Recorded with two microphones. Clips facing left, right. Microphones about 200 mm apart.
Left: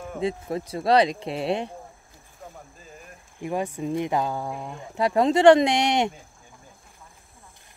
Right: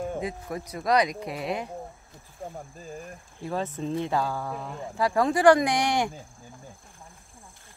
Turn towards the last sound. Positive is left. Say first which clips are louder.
# left 3 dB
turn(degrees=25)  # may be behind; listen again after turning